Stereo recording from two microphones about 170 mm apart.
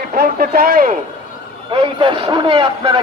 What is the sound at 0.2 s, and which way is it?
Speech, 60° right (ahead or behind).